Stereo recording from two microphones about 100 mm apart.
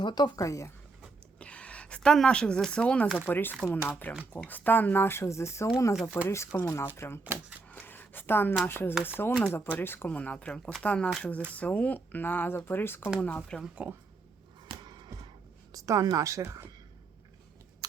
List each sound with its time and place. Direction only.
0.0 s speech: 50° left (ahead or behind)
0.3 s speech: 35° left (ahead or behind)
1.4 s speech: 10° left (ahead or behind)
7.3 s typewriter: 20° left (ahead or behind)
8.6 s speech: 20° left (ahead or behind)
13.1 s speech: 10° left (ahead or behind)
13.8 s speech: 10° right (ahead or behind)
14.7 s a sound: 50° right (ahead or behind)
15.7 s a woman's voice: 35° right (ahead or behind)